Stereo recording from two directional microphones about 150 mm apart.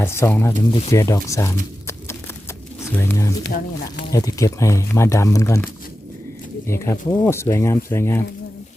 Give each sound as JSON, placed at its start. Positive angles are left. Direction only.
{"t": 0.0, "sound": "speech", "side_deg": 15}
{"t": 6.7, "sound": "speech", "side_deg": 15}